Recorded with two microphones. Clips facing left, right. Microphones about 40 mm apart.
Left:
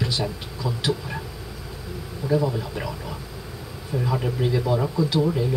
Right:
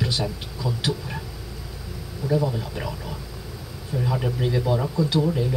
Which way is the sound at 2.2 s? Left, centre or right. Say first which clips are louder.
Left 1 dB; centre.